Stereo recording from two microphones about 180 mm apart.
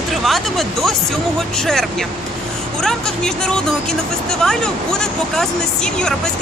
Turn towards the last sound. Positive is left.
turn(degrees=5)  # may be behind; listen again after turning